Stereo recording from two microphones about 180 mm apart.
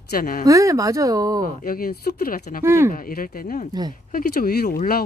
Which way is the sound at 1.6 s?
55° left (ahead or behind).